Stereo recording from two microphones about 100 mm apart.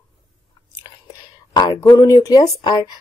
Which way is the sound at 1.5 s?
50° left (ahead or behind).